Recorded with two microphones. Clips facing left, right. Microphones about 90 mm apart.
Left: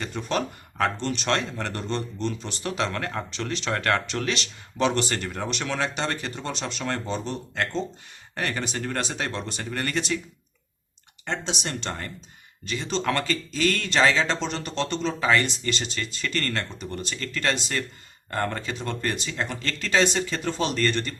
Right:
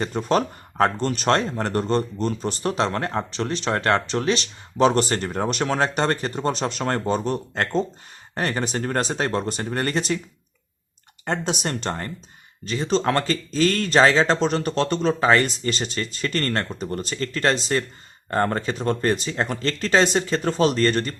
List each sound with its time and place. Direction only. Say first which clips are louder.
0.0 s speech: right 6 dB; 40° right (ahead or behind)
11.3 s speech: right 5 dB; 45° right (ahead or behind)